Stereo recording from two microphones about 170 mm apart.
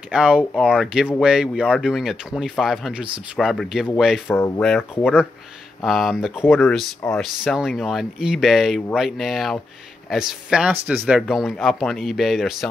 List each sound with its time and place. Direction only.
0.1 s speech: 5° right (ahead or behind); by 5.0 s 10° left (ahead or behind)
5.0 s speech: 5° right (ahead or behind)
6.4 s speech: 15° left (ahead or behind)
7.2 s speech: centre (ahead or behind)